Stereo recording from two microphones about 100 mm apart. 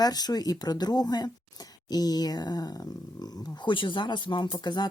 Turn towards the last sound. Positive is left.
turn(degrees=50)  # may be behind; listen again after turning